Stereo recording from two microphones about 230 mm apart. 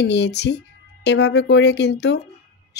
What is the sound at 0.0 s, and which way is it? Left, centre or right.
Speech, left.